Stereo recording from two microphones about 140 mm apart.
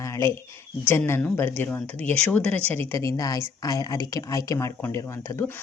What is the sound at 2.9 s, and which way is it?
Speech, 20° left (ahead or behind).